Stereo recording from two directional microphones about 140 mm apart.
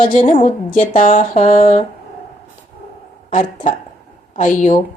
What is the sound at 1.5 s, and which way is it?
Speech, 50° left (ahead or behind).